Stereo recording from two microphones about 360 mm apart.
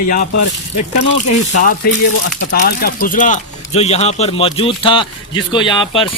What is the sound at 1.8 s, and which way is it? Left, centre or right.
Speech, left.